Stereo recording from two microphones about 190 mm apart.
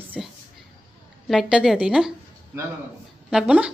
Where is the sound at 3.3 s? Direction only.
5° right (ahead or behind).